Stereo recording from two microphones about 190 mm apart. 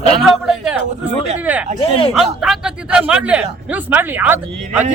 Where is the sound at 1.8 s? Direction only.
30° left (ahead or behind).